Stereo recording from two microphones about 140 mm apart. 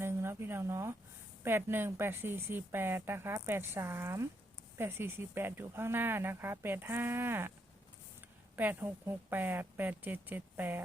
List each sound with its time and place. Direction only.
0.0 s a sound: 15° right (ahead or behind)
1.5 s speech: 15° right (ahead or behind)
8.5 s speech: 10° right (ahead or behind)